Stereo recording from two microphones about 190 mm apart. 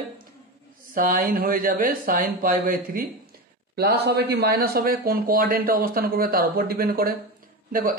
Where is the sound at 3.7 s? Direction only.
60° right (ahead or behind).